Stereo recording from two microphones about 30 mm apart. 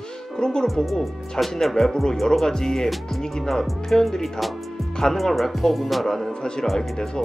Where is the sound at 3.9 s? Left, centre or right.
Centre.